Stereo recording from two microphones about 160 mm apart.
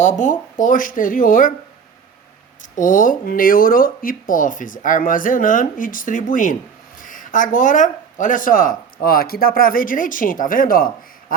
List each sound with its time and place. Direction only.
0.0 s speech: 55° left (ahead or behind)
2.7 s speech: 55° left (ahead or behind)